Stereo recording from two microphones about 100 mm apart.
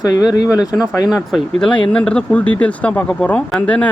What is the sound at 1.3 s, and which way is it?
Speech, 10° left (ahead or behind).